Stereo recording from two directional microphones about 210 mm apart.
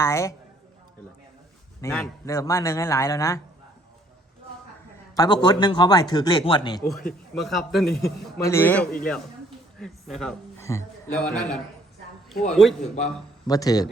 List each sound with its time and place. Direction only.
0.0 s a man's voice: 15° left (ahead or behind)
1.8 s a man's voice: 15° left (ahead or behind)
5.1 s speech: 20° left (ahead or behind)
7.3 s a man's voice: centre (ahead or behind)
8.4 s a man's voice: 10° left (ahead or behind)
10.6 s a sound: 15° left (ahead or behind)
11.3 s a man's voice: 5° left (ahead or behind)
13.5 s a man's voice: 15° left (ahead or behind)